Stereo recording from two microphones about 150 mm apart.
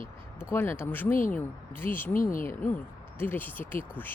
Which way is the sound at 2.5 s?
15° left (ahead or behind).